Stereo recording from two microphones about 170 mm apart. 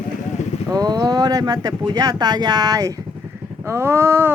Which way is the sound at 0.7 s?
25° right (ahead or behind).